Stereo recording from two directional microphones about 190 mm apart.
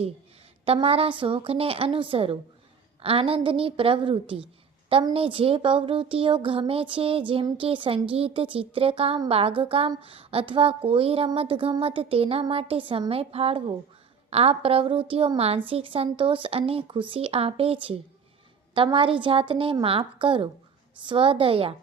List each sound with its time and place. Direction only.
0.6 s speech: 30° right (ahead or behind)